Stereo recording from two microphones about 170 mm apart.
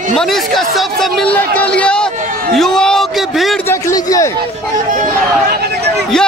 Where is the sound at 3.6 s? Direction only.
20° left (ahead or behind).